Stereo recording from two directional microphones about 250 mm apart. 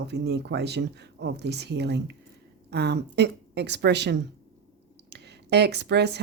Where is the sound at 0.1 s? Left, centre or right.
Right.